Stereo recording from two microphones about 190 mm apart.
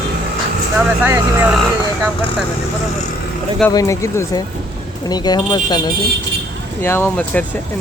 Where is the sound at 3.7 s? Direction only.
15° left (ahead or behind).